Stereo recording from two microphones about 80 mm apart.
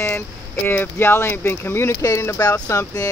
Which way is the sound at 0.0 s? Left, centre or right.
Left.